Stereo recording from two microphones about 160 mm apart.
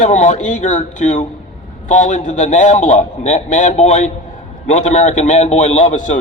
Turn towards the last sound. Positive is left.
turn(degrees=50)  # may be behind; listen again after turning